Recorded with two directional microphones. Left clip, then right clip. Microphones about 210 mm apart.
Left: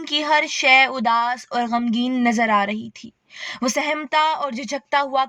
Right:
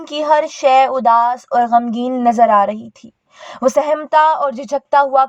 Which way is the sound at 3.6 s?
35° left (ahead or behind).